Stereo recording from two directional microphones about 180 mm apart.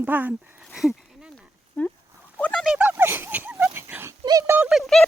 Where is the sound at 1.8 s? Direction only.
5° left (ahead or behind); by 4.6 s 15° right (ahead or behind).